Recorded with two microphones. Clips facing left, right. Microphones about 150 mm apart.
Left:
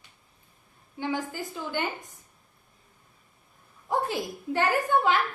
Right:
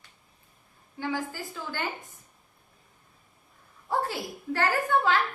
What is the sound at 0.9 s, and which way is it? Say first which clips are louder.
Speech: left 1 dB; 20° left (ahead or behind).